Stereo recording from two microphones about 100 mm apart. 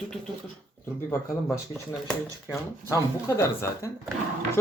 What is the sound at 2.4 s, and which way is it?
Speech, 30° left (ahead or behind).